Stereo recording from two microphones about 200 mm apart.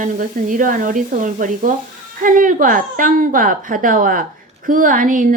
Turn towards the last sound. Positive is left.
turn(degrees=-40)  # may be behind; listen again after turning